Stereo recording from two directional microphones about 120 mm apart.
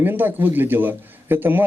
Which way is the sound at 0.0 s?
15° right (ahead or behind).